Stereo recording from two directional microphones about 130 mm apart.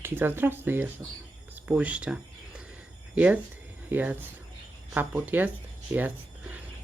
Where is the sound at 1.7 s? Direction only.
10° right (ahead or behind).